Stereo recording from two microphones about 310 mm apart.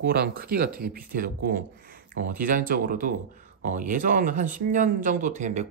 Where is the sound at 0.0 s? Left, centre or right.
Right.